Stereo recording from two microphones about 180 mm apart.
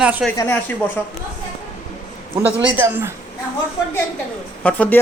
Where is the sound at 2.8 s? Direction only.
10° right (ahead or behind).